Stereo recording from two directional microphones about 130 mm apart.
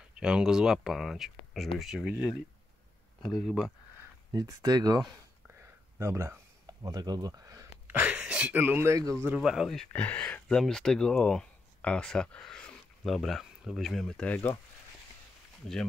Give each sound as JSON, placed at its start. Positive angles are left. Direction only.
{"t": 0.1, "sound": "speech", "side_deg": -5}
{"t": 3.2, "sound": "speech", "side_deg": 5}
{"t": 4.3, "sound": "speech", "side_deg": -25}
{"t": 5.6, "sound": "a sound", "side_deg": -20}
{"t": 7.8, "sound": "speech", "side_deg": -15}
{"t": 9.4, "sound": "speech", "side_deg": -5}